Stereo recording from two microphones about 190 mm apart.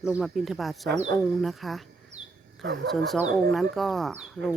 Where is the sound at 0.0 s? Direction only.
Centre (ahead or behind).